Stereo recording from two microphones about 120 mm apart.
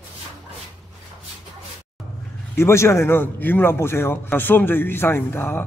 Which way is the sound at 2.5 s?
20° left (ahead or behind).